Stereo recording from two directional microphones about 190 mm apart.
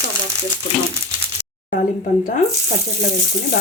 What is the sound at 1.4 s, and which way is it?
Speech, 55° left (ahead or behind).